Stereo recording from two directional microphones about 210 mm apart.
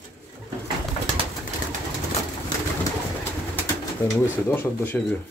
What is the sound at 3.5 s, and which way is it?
Speech, 10° left (ahead or behind).